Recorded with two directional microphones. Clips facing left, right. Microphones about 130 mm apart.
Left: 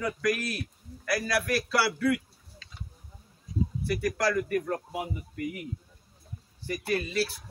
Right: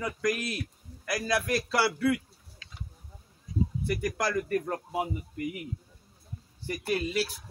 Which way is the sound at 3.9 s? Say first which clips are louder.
Left 4 dB; 20° right (ahead or behind).